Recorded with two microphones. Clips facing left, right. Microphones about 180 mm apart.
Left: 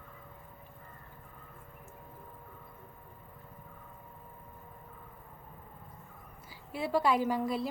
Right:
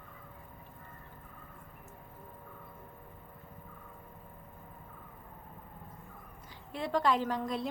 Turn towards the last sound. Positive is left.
turn(degrees=5)  # may be behind; listen again after turning